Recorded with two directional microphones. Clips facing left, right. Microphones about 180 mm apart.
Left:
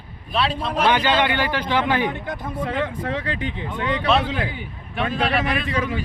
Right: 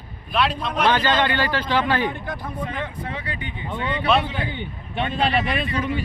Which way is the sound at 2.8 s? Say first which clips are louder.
Left 5 dB; 90° left.